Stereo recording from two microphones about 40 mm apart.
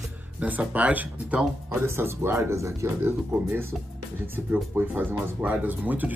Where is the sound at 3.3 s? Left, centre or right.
Right.